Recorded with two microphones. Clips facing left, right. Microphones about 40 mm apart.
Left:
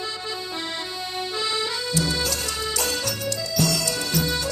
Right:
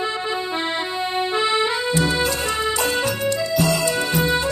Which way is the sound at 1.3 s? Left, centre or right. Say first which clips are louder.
Right 6 dB; right.